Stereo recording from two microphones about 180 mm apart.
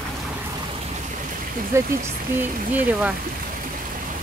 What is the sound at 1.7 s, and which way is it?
Speech, 15° right (ahead or behind).